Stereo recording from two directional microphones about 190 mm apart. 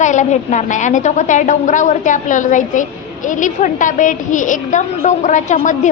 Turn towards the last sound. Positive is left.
turn(degrees=40)  # may be behind; listen again after turning